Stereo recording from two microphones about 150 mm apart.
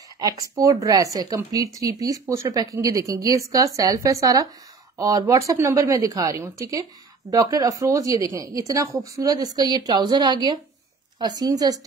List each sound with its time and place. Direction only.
0.2 s speech: 20° right (ahead or behind)